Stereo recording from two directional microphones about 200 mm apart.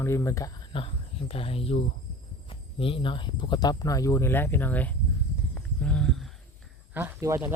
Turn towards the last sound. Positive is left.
turn(degrees=-15)  # may be behind; listen again after turning